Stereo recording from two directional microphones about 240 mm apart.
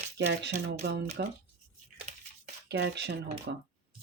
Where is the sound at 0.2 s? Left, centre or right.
Right.